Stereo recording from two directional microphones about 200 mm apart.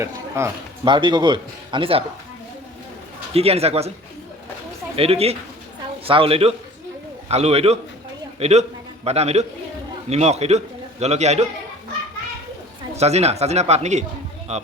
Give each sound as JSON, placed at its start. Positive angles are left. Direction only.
{"t": 0.0, "sound": "a man's voice", "side_deg": -15}
{"t": 3.3, "sound": "speech", "side_deg": -30}
{"t": 4.9, "sound": "a man's voice", "side_deg": -30}
{"t": 13.0, "sound": "speech", "side_deg": -30}